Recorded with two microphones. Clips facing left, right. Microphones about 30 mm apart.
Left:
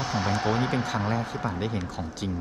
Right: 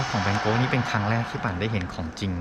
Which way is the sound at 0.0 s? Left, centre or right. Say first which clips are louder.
Right 2 dB; right.